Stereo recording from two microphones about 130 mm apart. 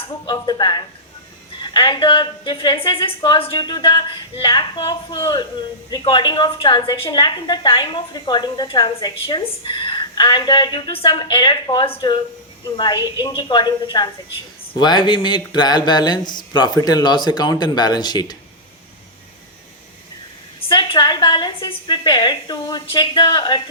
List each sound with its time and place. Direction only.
0.3 s a woman's voice: 35° left (ahead or behind)
20.7 s a woman's voice: 40° left (ahead or behind)